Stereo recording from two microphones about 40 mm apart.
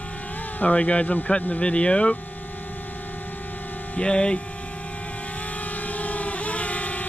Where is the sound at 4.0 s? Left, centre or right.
Left.